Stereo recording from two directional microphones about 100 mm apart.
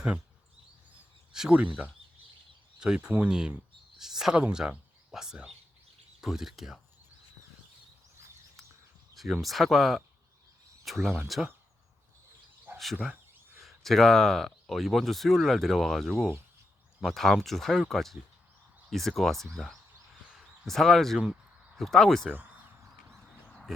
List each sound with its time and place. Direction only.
1.3 s speech: 5° right (ahead or behind)
9.1 s speech: centre (ahead or behind)
12.7 s speech: centre (ahead or behind)
20.3 s a sound: centre (ahead or behind)
21.8 s speech: 5° left (ahead or behind)